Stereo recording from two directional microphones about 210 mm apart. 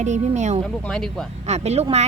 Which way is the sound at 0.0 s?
30° right (ahead or behind).